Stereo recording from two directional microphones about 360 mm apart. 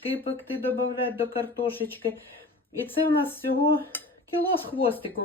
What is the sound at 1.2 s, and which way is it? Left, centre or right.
Speech, centre.